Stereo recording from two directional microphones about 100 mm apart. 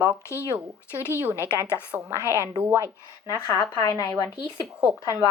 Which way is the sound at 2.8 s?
30° left (ahead or behind).